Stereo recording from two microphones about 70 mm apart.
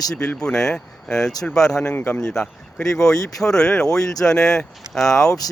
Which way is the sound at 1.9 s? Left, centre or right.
Left.